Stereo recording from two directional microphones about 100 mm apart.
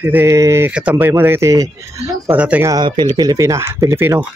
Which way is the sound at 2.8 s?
50° right (ahead or behind).